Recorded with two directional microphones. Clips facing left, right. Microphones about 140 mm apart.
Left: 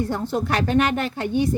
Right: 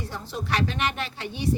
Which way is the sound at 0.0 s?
55° left (ahead or behind).